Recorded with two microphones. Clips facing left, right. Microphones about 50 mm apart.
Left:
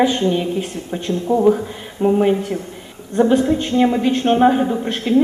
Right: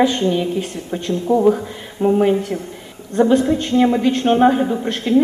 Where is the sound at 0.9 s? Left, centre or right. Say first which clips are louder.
Right 1 dB; centre.